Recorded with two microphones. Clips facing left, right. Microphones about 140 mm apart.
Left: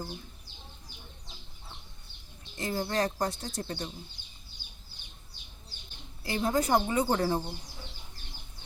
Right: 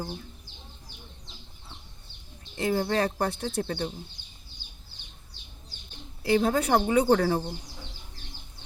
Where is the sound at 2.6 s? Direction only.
70° right (ahead or behind).